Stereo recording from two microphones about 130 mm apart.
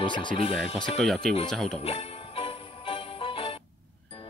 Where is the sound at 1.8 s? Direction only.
50° left (ahead or behind).